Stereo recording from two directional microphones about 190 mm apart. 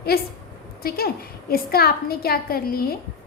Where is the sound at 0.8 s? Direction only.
55° left (ahead or behind).